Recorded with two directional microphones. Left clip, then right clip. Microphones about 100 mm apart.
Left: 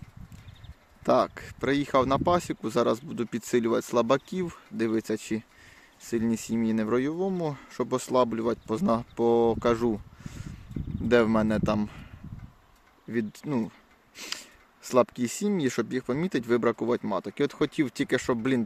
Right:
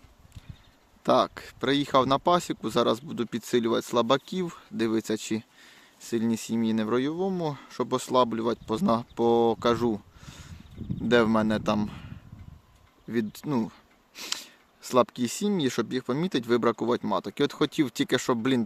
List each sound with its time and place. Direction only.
1.0 s speech: 5° right (ahead or behind)
6.0 s speech: centre (ahead or behind)
13.1 s speech: 15° right (ahead or behind)